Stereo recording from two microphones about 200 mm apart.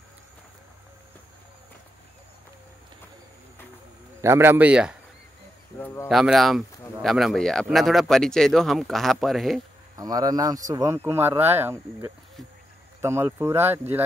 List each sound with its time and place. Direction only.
4.2 s speech: 15° right (ahead or behind)
6.0 s a man's voice: centre (ahead or behind)
9.9 s speech: 20° right (ahead or behind)